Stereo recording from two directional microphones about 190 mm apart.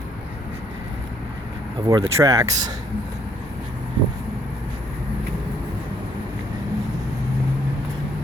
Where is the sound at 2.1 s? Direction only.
15° right (ahead or behind).